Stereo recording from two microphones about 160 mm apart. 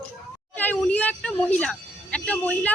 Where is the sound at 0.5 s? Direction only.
10° left (ahead or behind).